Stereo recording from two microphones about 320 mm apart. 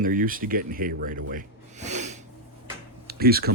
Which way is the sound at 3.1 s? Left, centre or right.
Right.